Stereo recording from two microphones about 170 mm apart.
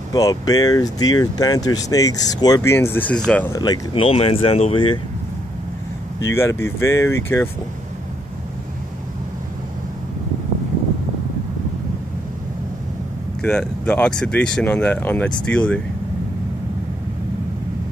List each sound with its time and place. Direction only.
0.1 s speech: 20° left (ahead or behind)
3.5 s speech: 25° left (ahead or behind)
6.3 s speech: 15° left (ahead or behind)
13.4 s speech: 5° left (ahead or behind)